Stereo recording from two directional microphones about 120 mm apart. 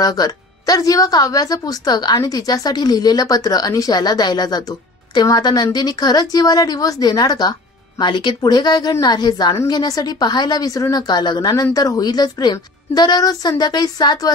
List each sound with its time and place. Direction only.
0.0 s a woman's voice: 30° left (ahead or behind)